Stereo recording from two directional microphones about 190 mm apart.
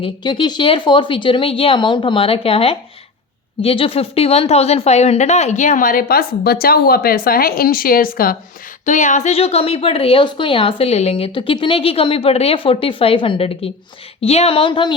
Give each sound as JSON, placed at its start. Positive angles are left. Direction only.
{"t": 0.0, "sound": "a woman's voice", "side_deg": 25}